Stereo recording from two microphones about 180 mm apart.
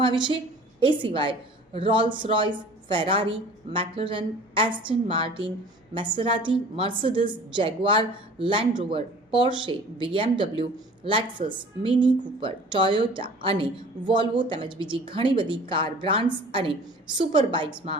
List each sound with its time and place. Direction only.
0.0 s a woman's voice: 25° right (ahead or behind)